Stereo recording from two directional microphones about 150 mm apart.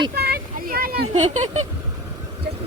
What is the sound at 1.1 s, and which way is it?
Speech, 50° right (ahead or behind).